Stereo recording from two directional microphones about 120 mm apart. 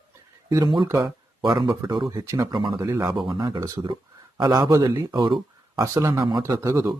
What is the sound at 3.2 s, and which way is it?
A man's voice, 35° right (ahead or behind).